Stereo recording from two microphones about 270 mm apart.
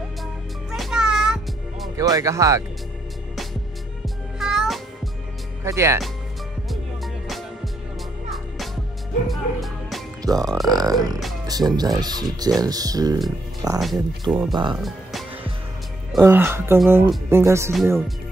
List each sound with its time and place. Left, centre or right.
0.2 s music: centre
2.0 s speech: centre
4.0 s music: centre
5.6 s speech: centre
7.2 s music: centre
9.3 s music: centre
10.2 s speech: centre
16.1 s speech: centre